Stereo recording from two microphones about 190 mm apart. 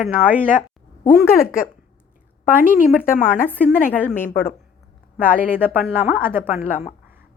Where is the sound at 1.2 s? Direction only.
50° left (ahead or behind).